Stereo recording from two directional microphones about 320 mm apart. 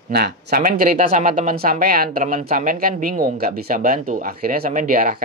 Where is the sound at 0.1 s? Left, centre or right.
Right.